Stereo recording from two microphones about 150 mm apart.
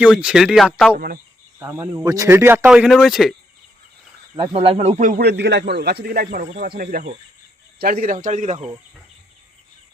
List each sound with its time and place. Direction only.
0.0 s speech: 5° right (ahead or behind)
0.9 s a man's voice: 70° right (ahead or behind)
1.5 s speech: 15° right (ahead or behind)
2.6 s speech: 5° right (ahead or behind)
4.4 s a man's voice: 35° right (ahead or behind); by 6.4 s 90° right
6.4 s speech: 50° right (ahead or behind)
6.7 s speech: 80° right; by 8.5 s 55° right (ahead or behind)